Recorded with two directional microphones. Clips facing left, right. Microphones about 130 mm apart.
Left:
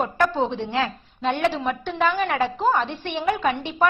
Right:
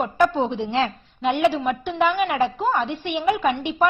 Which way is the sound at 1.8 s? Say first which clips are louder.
Right 1 dB; 10° right (ahead or behind).